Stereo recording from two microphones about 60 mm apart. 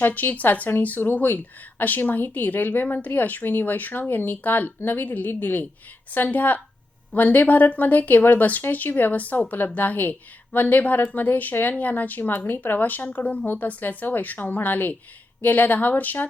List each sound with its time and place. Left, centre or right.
0.0 s speech: left